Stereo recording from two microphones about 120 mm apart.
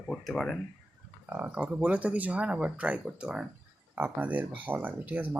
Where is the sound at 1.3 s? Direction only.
15° right (ahead or behind).